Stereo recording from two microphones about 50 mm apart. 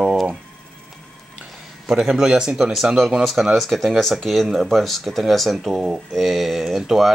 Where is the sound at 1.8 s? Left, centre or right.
Centre.